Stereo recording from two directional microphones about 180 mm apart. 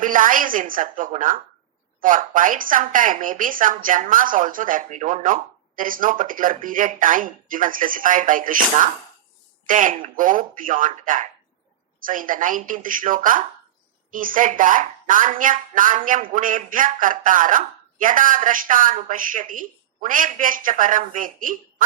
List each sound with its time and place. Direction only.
0.0 s speech: 50° right (ahead or behind)